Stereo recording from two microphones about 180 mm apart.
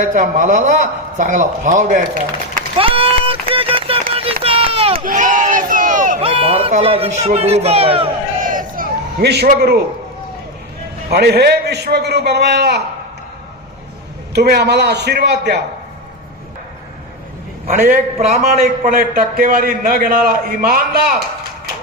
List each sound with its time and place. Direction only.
0.1 s a man's voice: 45° right (ahead or behind)
2.7 s a sound: 30° right (ahead or behind)
4.4 s run: 30° right (ahead or behind)
4.9 s battle cry: 50° right (ahead or behind)
6.2 s music: 30° right (ahead or behind)
7.3 s a man's voice: 35° right (ahead or behind)
8.4 s crowd: 50° right (ahead or behind)
11.1 s a man's voice: 65° right (ahead or behind)
14.3 s a man's voice: 65° right (ahead or behind)
17.7 s a man's voice: 45° right (ahead or behind)